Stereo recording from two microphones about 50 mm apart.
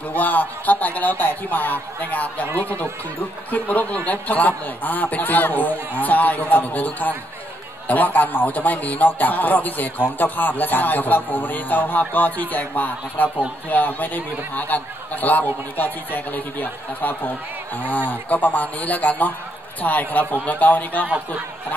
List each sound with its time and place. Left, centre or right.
0.1 s speech: left
2.4 s speech: right
3.5 s speech: left